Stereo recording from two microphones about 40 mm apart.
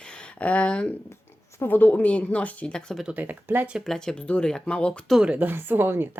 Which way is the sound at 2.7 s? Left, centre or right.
Left.